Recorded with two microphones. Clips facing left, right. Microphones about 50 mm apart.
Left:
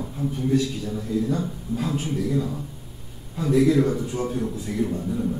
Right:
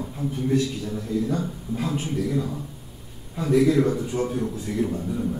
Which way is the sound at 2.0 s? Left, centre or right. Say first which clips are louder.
Left 1 dB; centre.